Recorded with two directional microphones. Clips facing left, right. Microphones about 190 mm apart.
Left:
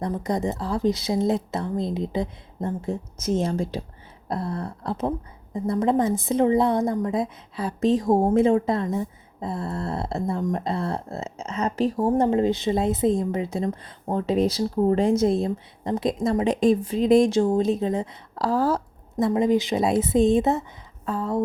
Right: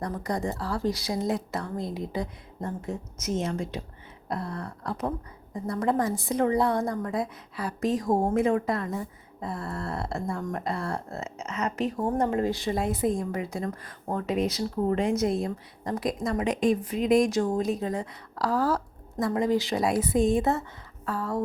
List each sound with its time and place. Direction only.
0.0 s a woman's voice: 20° left (ahead or behind)